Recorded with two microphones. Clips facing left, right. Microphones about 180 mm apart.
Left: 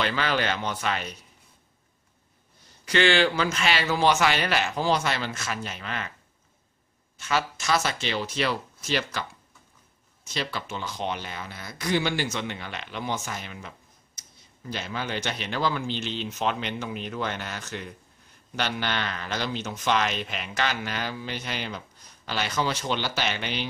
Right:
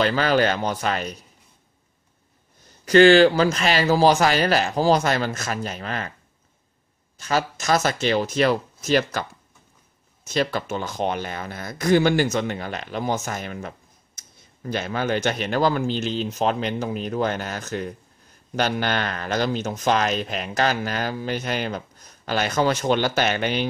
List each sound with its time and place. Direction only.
0.0 s speech: 40° right (ahead or behind)
2.8 s speech: 40° right (ahead or behind)
7.2 s speech: 40° right (ahead or behind)
10.2 s speech: 45° right (ahead or behind)